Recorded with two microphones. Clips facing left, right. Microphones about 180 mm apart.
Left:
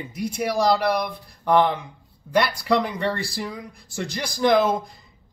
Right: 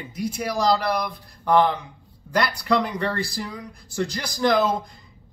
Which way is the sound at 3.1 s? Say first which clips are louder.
Left 1 dB; 15° left (ahead or behind).